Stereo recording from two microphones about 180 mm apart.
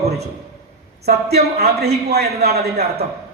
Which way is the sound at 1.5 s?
60° right (ahead or behind).